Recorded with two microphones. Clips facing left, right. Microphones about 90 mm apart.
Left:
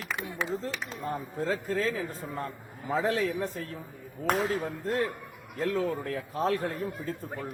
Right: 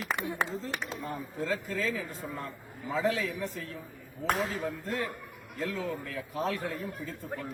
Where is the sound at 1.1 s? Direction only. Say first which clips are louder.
Left 4 dB; 35° left (ahead or behind).